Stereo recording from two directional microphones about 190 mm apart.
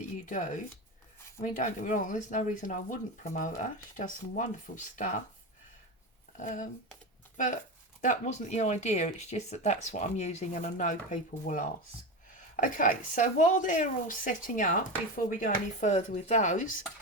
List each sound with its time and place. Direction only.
0.3 s a woman's voice: 40° left (ahead or behind)
6.3 s a woman's voice: 40° left (ahead or behind)